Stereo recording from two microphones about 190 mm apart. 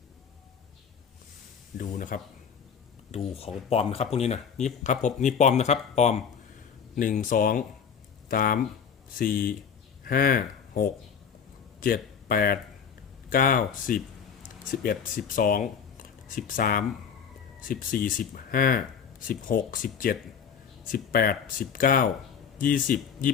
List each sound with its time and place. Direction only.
1.8 s speech: 45° left (ahead or behind)
3.1 s speech: 30° left (ahead or behind)